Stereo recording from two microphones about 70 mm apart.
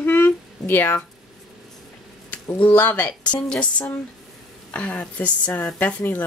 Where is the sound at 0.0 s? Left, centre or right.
Left.